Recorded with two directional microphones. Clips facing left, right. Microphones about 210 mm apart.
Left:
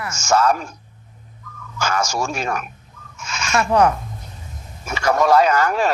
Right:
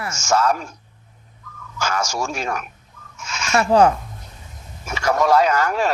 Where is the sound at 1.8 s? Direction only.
55° left (ahead or behind).